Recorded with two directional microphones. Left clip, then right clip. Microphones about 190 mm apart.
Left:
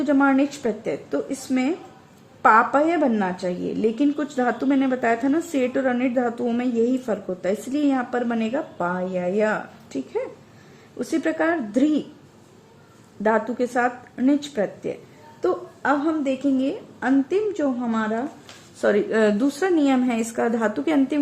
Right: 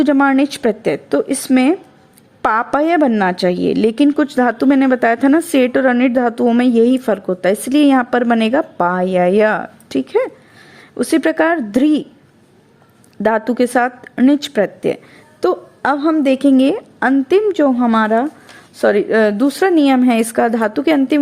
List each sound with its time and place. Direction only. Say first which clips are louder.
0.0 s speech: right 7 dB; 40° right (ahead or behind)
13.2 s speech: right 7 dB; 35° right (ahead or behind)